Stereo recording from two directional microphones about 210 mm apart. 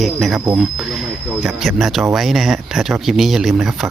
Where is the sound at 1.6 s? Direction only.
Centre (ahead or behind).